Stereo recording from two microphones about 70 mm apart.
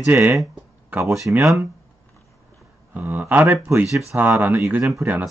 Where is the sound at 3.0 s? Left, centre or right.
Right.